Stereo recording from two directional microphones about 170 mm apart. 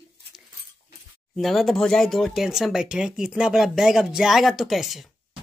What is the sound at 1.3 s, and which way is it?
Speech, centre (ahead or behind).